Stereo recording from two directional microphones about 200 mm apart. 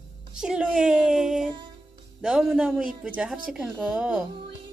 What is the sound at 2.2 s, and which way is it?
A woman's voice, centre (ahead or behind).